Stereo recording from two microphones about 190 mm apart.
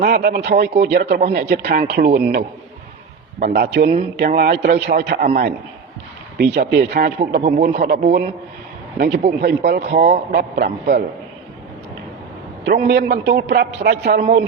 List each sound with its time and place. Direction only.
0.0 s a man's voice: 55° right (ahead or behind)
3.4 s speech: 60° right (ahead or behind)
3.8 s a man's voice: 45° right (ahead or behind)
9.0 s speech: 60° right (ahead or behind)
10.3 s a man's voice: 50° right (ahead or behind)
12.6 s speech: 55° right (ahead or behind)